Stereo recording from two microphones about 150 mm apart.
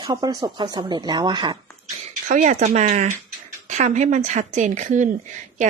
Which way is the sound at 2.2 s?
60° right (ahead or behind).